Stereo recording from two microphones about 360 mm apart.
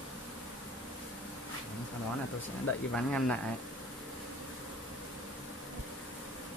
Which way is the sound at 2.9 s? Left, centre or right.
Centre.